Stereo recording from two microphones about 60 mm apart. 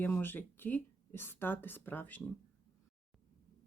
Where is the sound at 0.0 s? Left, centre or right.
Left.